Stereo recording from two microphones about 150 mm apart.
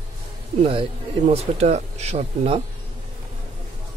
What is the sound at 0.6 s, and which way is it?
Speech, 45° right (ahead or behind).